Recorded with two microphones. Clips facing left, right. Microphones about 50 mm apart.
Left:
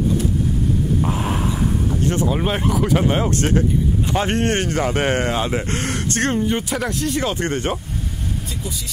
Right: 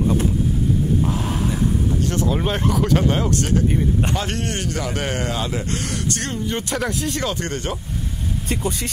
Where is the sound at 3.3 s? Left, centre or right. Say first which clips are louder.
Left 1 dB; left.